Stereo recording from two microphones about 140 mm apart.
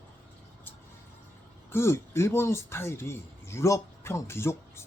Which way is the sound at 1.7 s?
20° left (ahead or behind).